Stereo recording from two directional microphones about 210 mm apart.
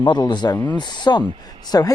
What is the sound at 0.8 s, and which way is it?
Speech, 20° left (ahead or behind).